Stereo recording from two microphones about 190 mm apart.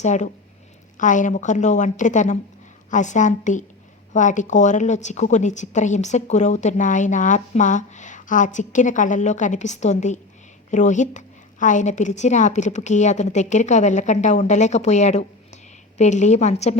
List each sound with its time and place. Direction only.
0.0 s a woman's voice: 40° left (ahead or behind)